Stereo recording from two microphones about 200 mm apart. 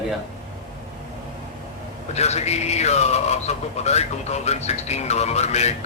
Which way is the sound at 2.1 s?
35° left (ahead or behind).